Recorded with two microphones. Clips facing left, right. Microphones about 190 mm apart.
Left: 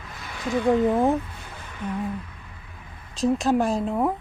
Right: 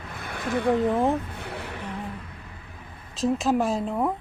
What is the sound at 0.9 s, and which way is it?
Speech, centre (ahead or behind).